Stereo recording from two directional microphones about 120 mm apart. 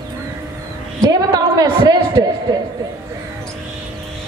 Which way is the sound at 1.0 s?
35° right (ahead or behind).